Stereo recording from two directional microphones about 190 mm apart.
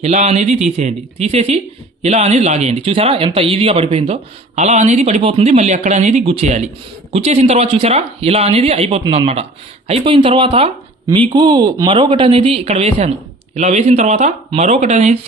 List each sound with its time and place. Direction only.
0.0 s speech: 35° right (ahead or behind)